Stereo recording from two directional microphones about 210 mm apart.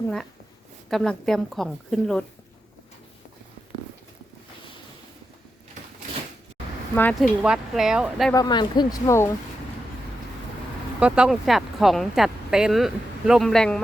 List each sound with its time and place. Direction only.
0.9 s speech: centre (ahead or behind)
6.9 s speech: 5° left (ahead or behind)
8.3 s speech: 20° left (ahead or behind)
11.0 s speech: 5° right (ahead or behind)